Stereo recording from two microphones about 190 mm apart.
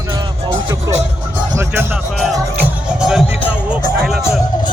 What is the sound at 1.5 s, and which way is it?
Speech, 10° right (ahead or behind).